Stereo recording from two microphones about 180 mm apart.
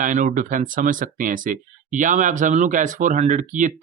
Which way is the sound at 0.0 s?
45° right (ahead or behind).